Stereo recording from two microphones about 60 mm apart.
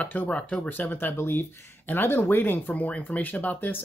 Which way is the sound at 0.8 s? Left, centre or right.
Left.